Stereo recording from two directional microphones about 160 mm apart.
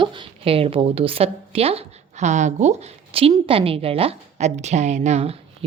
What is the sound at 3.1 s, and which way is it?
A woman's voice, 35° right (ahead or behind).